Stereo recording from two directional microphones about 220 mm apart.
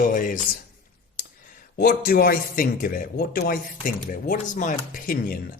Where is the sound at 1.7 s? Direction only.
40° left (ahead or behind).